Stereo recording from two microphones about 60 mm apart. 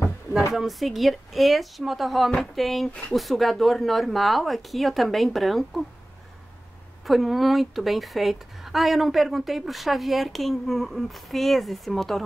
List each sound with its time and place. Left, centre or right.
0.5 s a woman's voice: centre
7.1 s a woman's voice: centre